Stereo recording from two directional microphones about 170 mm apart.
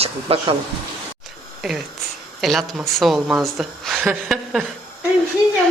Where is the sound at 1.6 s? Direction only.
Centre (ahead or behind).